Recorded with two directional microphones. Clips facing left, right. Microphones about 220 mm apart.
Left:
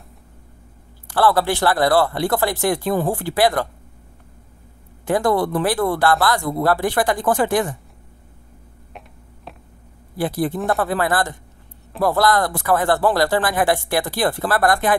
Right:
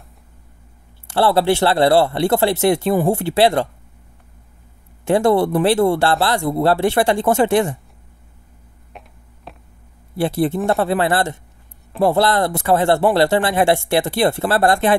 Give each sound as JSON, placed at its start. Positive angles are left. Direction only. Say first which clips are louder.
{"t": 1.0, "sound": "a man's voice", "louder": "right 2 dB", "side_deg": -25}
{"t": 5.0, "sound": "a man's voice", "louder": "right 4 dB", "side_deg": -25}
{"t": 8.9, "sound": "a sound", "louder": "even", "side_deg": 0}
{"t": 10.1, "sound": "a man's voice", "louder": "right 3 dB", "side_deg": -25}